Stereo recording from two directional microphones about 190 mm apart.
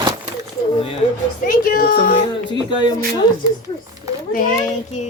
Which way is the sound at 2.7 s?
25° left (ahead or behind).